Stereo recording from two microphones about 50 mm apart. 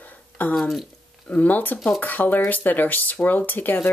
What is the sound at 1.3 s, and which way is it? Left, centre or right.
Speech, left.